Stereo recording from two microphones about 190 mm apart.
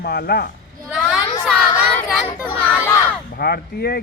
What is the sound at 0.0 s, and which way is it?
Speech, 60° left (ahead or behind).